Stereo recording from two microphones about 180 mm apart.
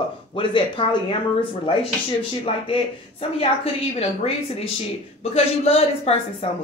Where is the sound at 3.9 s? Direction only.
35° left (ahead or behind).